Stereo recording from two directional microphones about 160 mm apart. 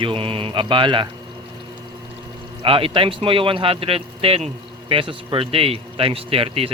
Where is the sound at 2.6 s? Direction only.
35° right (ahead or behind).